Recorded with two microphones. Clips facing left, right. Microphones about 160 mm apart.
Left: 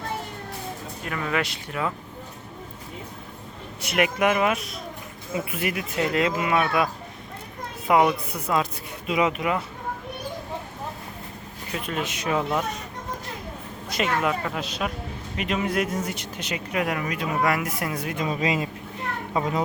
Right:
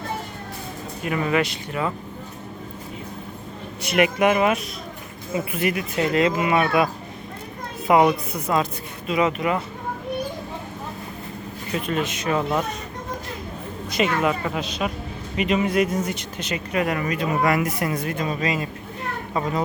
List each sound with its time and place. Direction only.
1.0 s speech: 10° right (ahead or behind)
3.8 s speech: centre (ahead or behind)
11.7 s speech: 5° left (ahead or behind)
13.9 s speech: centre (ahead or behind)
18.2 s speech: 20° left (ahead or behind)